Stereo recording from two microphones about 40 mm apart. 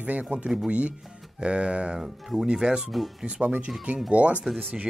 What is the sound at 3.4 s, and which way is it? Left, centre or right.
Speech, right.